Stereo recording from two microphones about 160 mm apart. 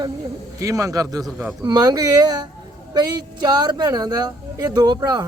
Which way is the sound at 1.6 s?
25° right (ahead or behind).